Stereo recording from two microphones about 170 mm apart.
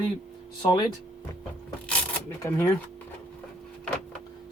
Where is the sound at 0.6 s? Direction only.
25° left (ahead or behind).